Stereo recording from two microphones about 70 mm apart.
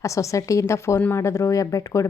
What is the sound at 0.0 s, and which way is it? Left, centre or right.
Speech, left.